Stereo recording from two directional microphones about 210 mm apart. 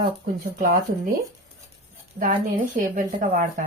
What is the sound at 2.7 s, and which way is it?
Speech, 40° right (ahead or behind).